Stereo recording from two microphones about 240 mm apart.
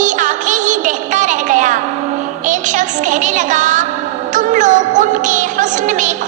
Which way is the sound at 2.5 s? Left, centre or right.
Right.